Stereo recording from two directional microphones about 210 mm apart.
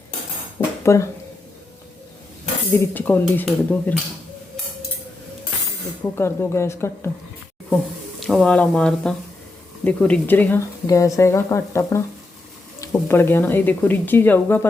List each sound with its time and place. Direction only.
0.9 s a woman's voice: 15° left (ahead or behind)
2.7 s a woman's voice: 10° left (ahead or behind)
6.1 s a woman's voice: 10° left (ahead or behind)
8.2 s a woman's voice: centre (ahead or behind)